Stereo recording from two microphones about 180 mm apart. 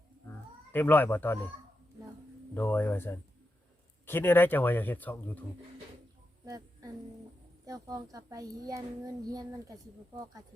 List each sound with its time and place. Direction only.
0.7 s speech: 10° left (ahead or behind)
2.6 s speech: 10° left (ahead or behind)
6.4 s music: 20° right (ahead or behind)
7.6 s a woman's voice: 20° right (ahead or behind)